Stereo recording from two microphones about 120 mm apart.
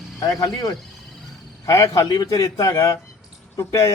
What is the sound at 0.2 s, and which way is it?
A man's voice, 30° left (ahead or behind).